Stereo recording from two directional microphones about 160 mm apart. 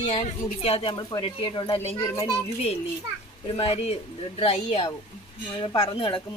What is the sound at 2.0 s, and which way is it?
Speech, 25° left (ahead or behind).